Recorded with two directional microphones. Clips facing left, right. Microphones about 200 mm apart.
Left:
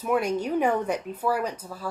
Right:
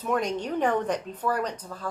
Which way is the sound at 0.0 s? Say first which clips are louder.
Left 2 dB; 10° left (ahead or behind).